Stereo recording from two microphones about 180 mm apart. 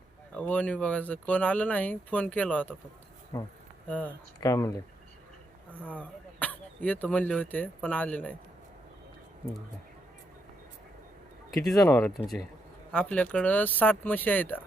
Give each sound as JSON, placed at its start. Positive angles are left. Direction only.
{"t": 0.3, "sound": "speech", "side_deg": 5}
{"t": 5.8, "sound": "speech", "side_deg": 10}
{"t": 11.8, "sound": "speech", "side_deg": 5}